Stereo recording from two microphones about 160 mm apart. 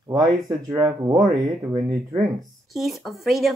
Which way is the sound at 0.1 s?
20° right (ahead or behind).